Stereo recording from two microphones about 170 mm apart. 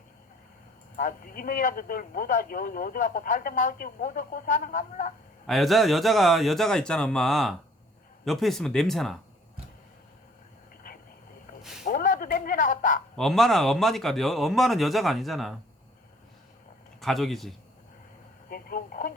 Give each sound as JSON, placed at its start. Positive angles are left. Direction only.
{"t": 0.9, "sound": "a man's voice", "side_deg": 55}
{"t": 5.5, "sound": "speech", "side_deg": 0}
{"t": 11.9, "sound": "speech", "side_deg": 50}
{"t": 13.1, "sound": "speech", "side_deg": 0}
{"t": 17.0, "sound": "speech", "side_deg": 0}
{"t": 18.4, "sound": "speech", "side_deg": 55}